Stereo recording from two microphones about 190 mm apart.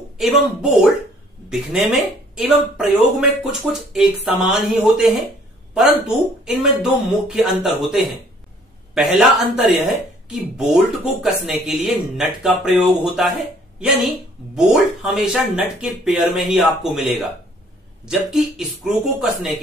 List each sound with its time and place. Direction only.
0.2 s speech: centre (ahead or behind)